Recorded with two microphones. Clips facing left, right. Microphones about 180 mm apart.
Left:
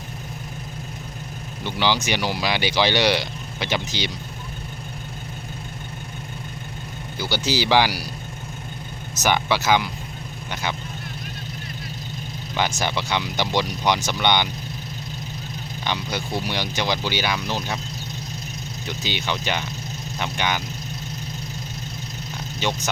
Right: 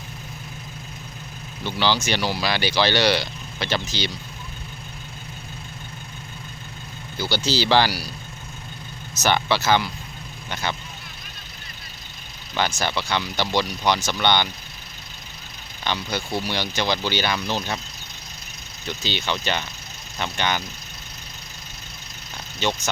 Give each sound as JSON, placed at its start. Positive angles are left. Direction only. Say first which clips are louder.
{"t": 1.6, "sound": "speech", "louder": "even", "side_deg": 15}
{"t": 7.2, "sound": "speech", "louder": "even", "side_deg": 15}
{"t": 9.2, "sound": "speech", "louder": "even", "side_deg": 15}
{"t": 12.5, "sound": "speech", "louder": "even", "side_deg": 15}
{"t": 15.8, "sound": "speech", "louder": "right 1 dB", "side_deg": 15}
{"t": 18.9, "sound": "speech", "louder": "right 1 dB", "side_deg": 15}
{"t": 22.6, "sound": "speech", "louder": "right 1 dB", "side_deg": 15}